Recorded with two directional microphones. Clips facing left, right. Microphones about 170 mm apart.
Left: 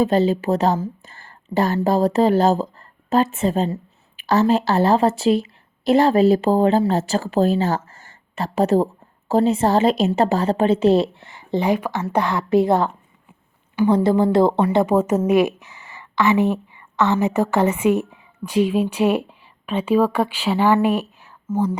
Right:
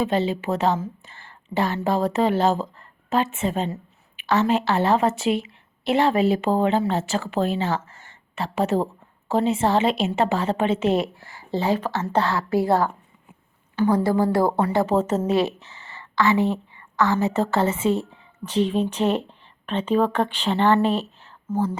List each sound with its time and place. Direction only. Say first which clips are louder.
0.0 s a woman's voice: left 5 dB; 40° left (ahead or behind); by 21.3 s 10° left (ahead or behind)